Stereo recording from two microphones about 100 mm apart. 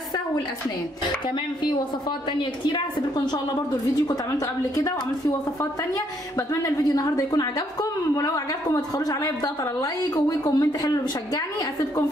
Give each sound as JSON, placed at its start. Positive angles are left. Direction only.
{"t": 1.2, "sound": "speech", "side_deg": 50}
{"t": 4.1, "sound": "a woman's voice", "side_deg": 35}